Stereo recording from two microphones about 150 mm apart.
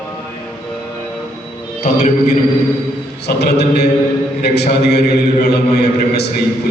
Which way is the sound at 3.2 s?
90° left.